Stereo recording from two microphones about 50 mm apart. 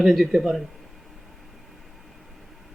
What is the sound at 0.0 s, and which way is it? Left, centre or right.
Speech, centre.